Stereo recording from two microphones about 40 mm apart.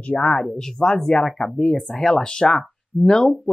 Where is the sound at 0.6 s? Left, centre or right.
Centre.